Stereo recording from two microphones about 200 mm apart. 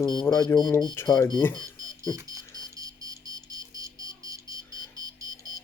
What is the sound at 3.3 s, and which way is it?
Music, 20° right (ahead or behind).